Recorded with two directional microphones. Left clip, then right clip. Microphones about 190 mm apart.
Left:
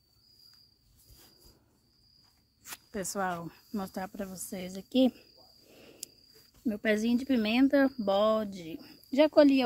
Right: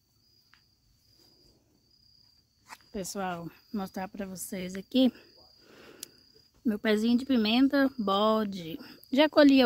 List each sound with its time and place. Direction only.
2.9 s a woman's voice: 5° right (ahead or behind); by 9.6 s 35° right (ahead or behind)